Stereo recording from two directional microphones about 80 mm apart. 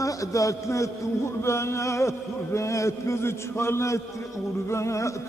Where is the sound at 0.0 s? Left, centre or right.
Left.